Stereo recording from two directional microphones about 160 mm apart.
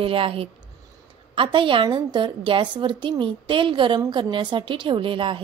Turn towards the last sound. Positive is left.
turn(degrees=-30)  # may be behind; listen again after turning